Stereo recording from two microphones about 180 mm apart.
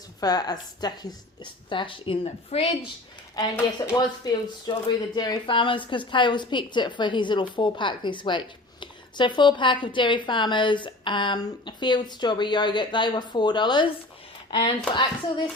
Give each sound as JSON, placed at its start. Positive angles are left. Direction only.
{"t": 0.2, "sound": "speech", "side_deg": 20}
{"t": 3.8, "sound": "speech", "side_deg": 20}